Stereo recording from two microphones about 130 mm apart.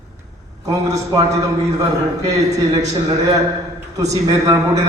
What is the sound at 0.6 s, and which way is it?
Speech, 25° right (ahead or behind).